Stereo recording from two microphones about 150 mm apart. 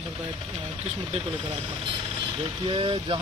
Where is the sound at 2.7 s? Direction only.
35° right (ahead or behind).